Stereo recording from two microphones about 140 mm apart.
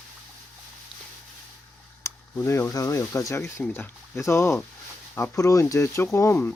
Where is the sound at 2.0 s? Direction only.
20° left (ahead or behind).